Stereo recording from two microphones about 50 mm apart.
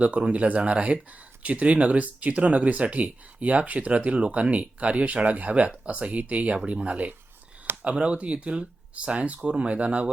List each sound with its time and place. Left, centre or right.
0.0 s speech: right